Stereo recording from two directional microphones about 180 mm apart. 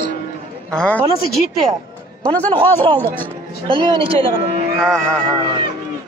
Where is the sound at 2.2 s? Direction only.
10° left (ahead or behind).